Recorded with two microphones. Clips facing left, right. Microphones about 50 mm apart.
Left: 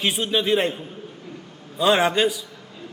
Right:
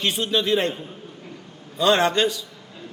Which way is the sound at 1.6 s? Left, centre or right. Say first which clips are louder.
Even; centre.